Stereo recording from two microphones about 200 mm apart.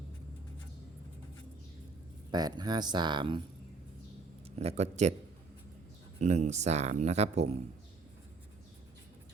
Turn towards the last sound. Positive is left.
turn(degrees=-30)  # may be behind; listen again after turning